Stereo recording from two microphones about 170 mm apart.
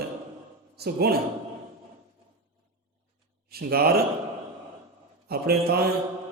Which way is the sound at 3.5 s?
65° right (ahead or behind).